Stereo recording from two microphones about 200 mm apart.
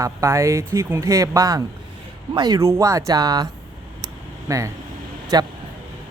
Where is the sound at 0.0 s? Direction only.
15° right (ahead or behind).